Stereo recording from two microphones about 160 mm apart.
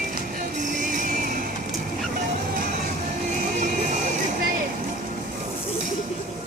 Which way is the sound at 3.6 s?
50° right (ahead or behind).